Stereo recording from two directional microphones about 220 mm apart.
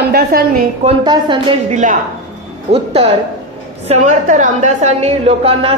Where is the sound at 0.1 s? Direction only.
45° right (ahead or behind).